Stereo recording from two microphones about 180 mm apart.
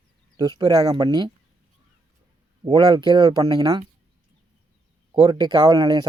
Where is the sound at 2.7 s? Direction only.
25° right (ahead or behind).